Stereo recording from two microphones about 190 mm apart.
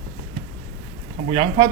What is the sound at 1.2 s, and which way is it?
Speech, 35° right (ahead or behind).